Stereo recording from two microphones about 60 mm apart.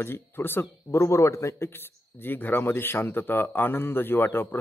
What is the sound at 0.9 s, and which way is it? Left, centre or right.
A man's voice, left.